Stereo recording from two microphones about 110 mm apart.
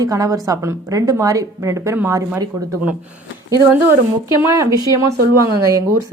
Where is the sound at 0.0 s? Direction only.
35° right (ahead or behind).